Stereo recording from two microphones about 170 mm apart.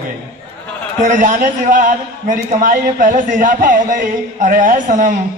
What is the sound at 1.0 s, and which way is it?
A man's voice, 50° right (ahead or behind).